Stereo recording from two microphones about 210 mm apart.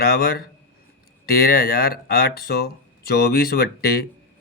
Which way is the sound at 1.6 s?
45° left (ahead or behind).